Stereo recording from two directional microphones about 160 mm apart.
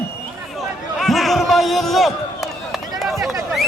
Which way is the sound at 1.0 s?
Centre (ahead or behind).